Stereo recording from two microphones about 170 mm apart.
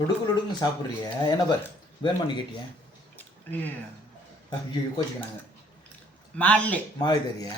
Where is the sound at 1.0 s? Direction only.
25° left (ahead or behind).